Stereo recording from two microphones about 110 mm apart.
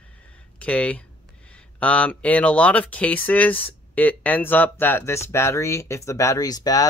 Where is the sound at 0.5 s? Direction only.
10° left (ahead or behind).